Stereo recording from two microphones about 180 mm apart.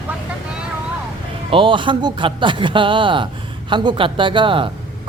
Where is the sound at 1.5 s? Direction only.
30° right (ahead or behind).